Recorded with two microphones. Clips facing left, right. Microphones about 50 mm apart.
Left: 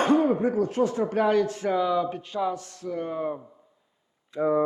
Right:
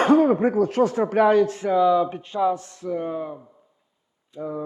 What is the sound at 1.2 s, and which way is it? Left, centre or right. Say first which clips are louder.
Speech: right 6 dB; right.